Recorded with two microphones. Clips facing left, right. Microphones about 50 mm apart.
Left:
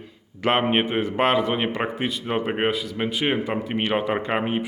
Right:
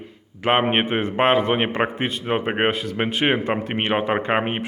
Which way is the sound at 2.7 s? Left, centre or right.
Right.